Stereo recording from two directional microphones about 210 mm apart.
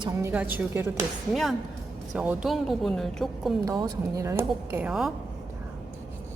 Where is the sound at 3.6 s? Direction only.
20° right (ahead or behind).